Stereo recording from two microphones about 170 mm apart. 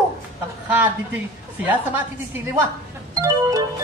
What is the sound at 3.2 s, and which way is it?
Music, 20° right (ahead or behind).